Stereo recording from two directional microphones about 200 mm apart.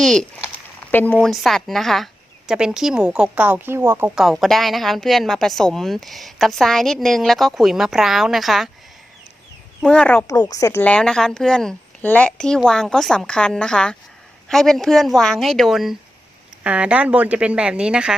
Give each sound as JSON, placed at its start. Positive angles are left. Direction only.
{"t": 0.0, "sound": "a woman's voice", "side_deg": 0}
{"t": 9.8, "sound": "a woman's voice", "side_deg": 5}